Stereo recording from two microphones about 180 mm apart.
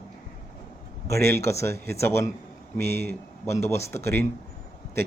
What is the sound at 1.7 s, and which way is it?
Speech, 60° right (ahead or behind).